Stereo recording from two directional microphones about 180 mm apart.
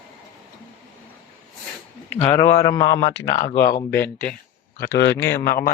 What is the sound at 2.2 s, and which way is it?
Speech, 25° left (ahead or behind).